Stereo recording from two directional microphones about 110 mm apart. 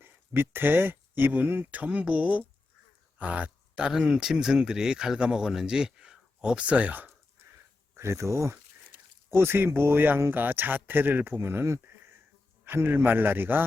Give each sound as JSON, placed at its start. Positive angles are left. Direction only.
{"t": 0.0, "sound": "speech", "side_deg": -20}
{"t": 7.9, "sound": "speech", "side_deg": -25}